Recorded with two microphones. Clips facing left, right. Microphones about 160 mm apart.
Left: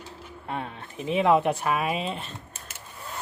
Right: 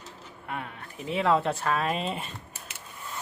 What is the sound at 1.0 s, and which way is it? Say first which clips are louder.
Speech: left 4 dB; 20° left (ahead or behind).